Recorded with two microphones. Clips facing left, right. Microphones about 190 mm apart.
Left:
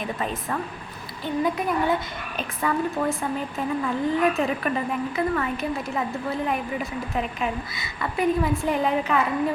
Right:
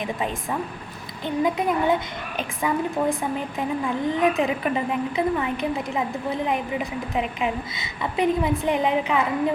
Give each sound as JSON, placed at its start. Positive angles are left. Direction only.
{"t": 0.0, "sound": "a woman's voice", "side_deg": -15}